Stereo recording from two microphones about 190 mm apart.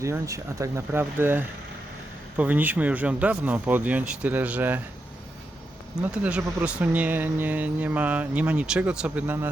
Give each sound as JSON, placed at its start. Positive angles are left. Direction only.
{"t": 0.0, "sound": "speech", "side_deg": -15}
{"t": 6.0, "sound": "speech", "side_deg": -5}